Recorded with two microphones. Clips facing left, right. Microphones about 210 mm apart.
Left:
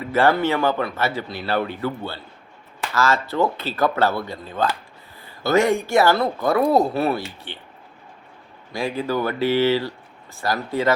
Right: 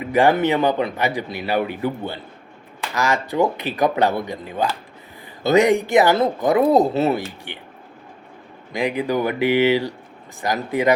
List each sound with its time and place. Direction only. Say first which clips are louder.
0.0 s speech: right 2 dB; 15° right (ahead or behind)
8.7 s speech: right 3 dB; 15° right (ahead or behind)